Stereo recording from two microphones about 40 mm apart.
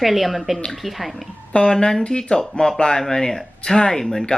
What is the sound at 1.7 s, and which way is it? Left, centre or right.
Speech, centre.